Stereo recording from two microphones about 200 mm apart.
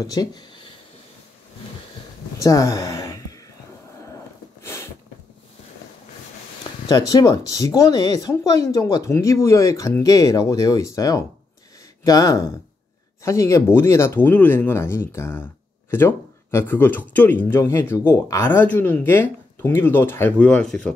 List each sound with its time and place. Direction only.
0.0 s speech: 20° left (ahead or behind)
2.3 s a sound: 15° left (ahead or behind)
6.9 s speech: 20° left (ahead or behind); by 20.9 s centre (ahead or behind)